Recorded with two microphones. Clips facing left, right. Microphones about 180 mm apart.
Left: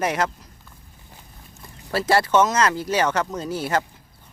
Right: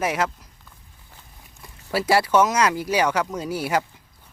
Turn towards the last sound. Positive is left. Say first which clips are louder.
# even
turn(degrees=-10)  # may be behind; listen again after turning